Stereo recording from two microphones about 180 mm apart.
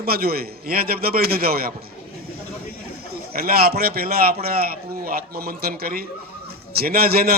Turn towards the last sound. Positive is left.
turn(degrees=-55)  # may be behind; listen again after turning